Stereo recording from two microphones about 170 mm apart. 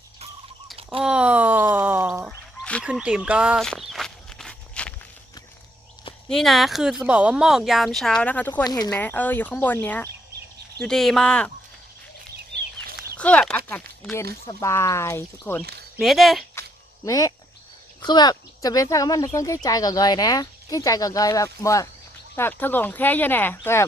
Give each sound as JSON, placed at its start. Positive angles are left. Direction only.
{"t": 1.0, "sound": "a sound", "side_deg": -5}
{"t": 2.2, "sound": "fowl", "side_deg": 5}
{"t": 2.8, "sound": "speech", "side_deg": -5}
{"t": 3.6, "sound": "walk", "side_deg": 0}
{"t": 6.2, "sound": "speech", "side_deg": 0}
{"t": 8.6, "sound": "speech", "side_deg": 25}
{"t": 9.0, "sound": "speech", "side_deg": 10}
{"t": 13.1, "sound": "a sound", "side_deg": 5}
{"t": 14.4, "sound": "speech", "side_deg": 15}
{"t": 16.0, "sound": "speech", "side_deg": 0}
{"t": 17.1, "sound": "speech", "side_deg": 20}